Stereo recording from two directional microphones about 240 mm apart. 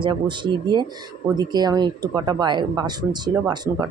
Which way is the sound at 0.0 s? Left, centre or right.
Centre.